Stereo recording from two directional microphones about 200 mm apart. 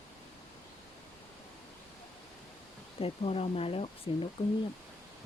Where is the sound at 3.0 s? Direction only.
30° left (ahead or behind).